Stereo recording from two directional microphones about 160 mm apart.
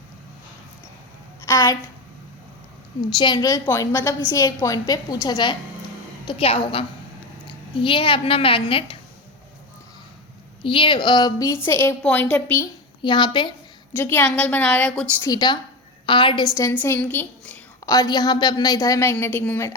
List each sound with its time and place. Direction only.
1.5 s a woman's voice: 15° left (ahead or behind)
3.2 s a woman's voice: 30° left (ahead or behind)
10.6 s a woman's voice: 35° left (ahead or behind); by 12.6 s 10° left (ahead or behind)
13.0 s a woman's voice: 30° left (ahead or behind)
13.9 s a woman's voice: 15° left (ahead or behind)
15.2 s a woman's voice: 25° left (ahead or behind)
16.6 s a woman's voice: 15° left (ahead or behind)
17.8 s a woman's voice: 25° left (ahead or behind)